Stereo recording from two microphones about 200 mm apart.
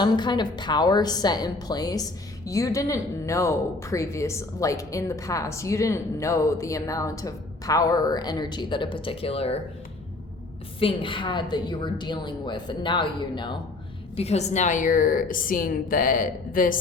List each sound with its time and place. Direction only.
0.0 s a woman's voice: 20° left (ahead or behind)
10.8 s a woman's voice: 25° left (ahead or behind); by 16.7 s 45° left (ahead or behind)